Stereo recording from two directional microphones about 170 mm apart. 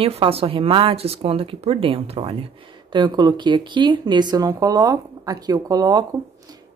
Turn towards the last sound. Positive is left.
turn(degrees=-25)  # may be behind; listen again after turning